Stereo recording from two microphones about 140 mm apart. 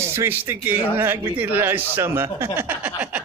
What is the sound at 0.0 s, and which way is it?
A man's voice, 15° right (ahead or behind).